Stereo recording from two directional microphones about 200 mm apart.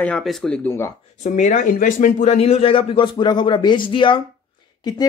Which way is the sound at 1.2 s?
35° left (ahead or behind).